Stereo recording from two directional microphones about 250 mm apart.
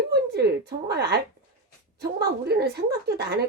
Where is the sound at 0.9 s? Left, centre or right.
Right.